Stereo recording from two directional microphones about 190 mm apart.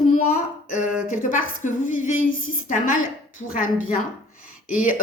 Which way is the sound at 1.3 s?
40° left (ahead or behind).